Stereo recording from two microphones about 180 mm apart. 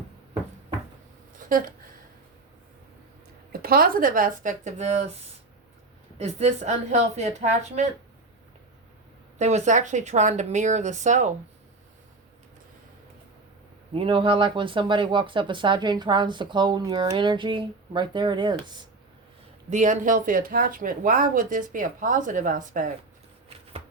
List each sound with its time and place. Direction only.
1.4 s a sound: 50° right (ahead or behind)
3.5 s speech: 55° right (ahead or behind); by 5.1 s 40° right (ahead or behind)
6.1 s speech: 40° right (ahead or behind)
9.4 s speech: 40° right (ahead or behind)
13.9 s speech: 30° right (ahead or behind)
19.7 s speech: 45° right (ahead or behind)